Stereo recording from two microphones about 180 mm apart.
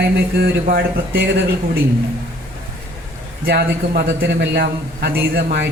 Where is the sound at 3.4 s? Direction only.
60° right (ahead or behind).